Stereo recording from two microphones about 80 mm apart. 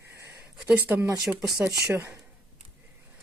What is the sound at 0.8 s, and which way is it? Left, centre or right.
Speech, right.